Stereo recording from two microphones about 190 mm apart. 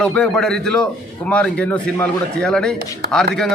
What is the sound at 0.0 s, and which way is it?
Speech, 5° left (ahead or behind).